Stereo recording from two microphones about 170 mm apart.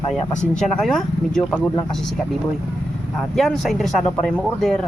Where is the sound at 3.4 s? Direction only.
Centre (ahead or behind).